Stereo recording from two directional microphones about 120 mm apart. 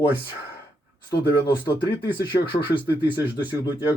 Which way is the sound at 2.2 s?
40° left (ahead or behind).